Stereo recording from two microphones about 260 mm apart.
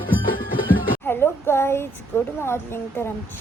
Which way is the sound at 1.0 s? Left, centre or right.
Centre.